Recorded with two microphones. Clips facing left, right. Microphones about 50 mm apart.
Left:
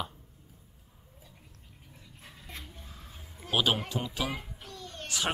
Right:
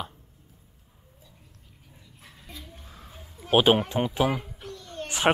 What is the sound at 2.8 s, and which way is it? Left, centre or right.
Music, right.